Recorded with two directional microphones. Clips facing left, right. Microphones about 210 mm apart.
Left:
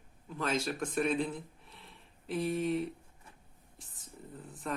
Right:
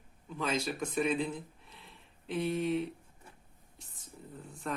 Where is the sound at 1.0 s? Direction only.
Centre (ahead or behind).